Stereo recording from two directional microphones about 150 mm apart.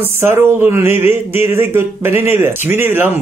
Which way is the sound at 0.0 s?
15° right (ahead or behind).